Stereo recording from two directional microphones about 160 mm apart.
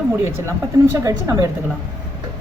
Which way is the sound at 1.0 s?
20° right (ahead or behind).